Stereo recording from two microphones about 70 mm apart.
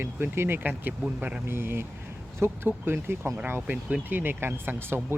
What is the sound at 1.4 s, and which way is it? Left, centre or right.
Speech, right.